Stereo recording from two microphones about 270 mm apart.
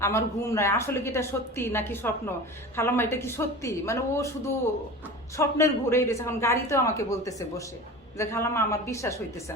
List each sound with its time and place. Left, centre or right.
0.0 s speech: centre